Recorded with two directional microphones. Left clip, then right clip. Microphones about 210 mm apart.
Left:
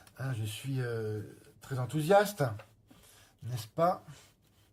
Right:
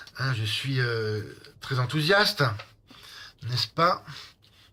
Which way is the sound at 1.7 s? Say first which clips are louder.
Right 4 dB; 20° right (ahead or behind).